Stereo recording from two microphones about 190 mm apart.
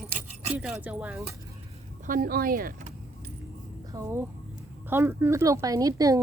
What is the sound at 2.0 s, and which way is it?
Vehicle, 45° right (ahead or behind).